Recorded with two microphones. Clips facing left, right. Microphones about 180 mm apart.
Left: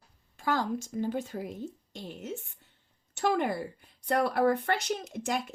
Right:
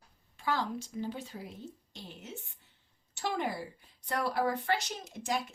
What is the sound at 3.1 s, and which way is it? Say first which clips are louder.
Speech: left 6 dB; 55° left (ahead or behind).